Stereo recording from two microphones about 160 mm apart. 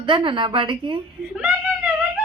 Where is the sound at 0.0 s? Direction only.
30° right (ahead or behind).